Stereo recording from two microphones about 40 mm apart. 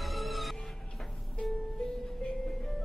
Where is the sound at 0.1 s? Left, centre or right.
Centre.